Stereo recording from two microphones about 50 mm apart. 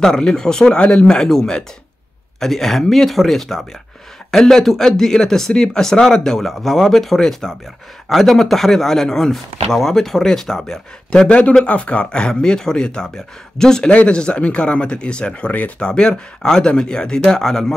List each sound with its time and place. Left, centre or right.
0.0 s speech: centre
15.9 s speech: centre